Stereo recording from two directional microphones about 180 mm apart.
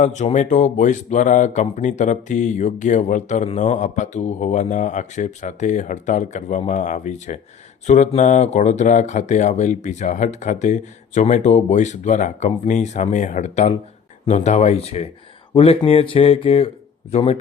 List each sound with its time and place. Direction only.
0.0 s speech: 40° left (ahead or behind)